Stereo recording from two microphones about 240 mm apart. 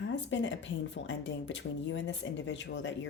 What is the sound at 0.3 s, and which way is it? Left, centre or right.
Speech, left.